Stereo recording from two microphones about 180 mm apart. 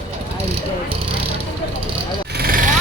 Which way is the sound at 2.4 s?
50° right (ahead or behind).